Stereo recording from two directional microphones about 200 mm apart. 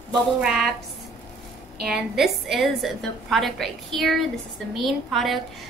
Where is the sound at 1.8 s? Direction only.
Centre (ahead or behind).